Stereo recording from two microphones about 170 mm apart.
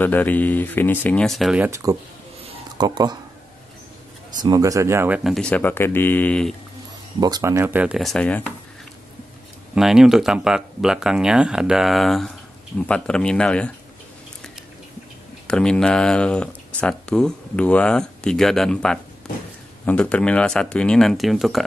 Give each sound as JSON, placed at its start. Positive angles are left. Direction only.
{"t": 0.0, "sound": "speech", "side_deg": 10}
{"t": 1.7, "sound": "speech", "side_deg": -20}
{"t": 2.4, "sound": "a sound", "side_deg": -25}
{"t": 4.4, "sound": "speech", "side_deg": -20}
{"t": 7.2, "sound": "speech", "side_deg": -25}
{"t": 9.8, "sound": "speech", "side_deg": -5}
{"t": 15.4, "sound": "speech", "side_deg": 5}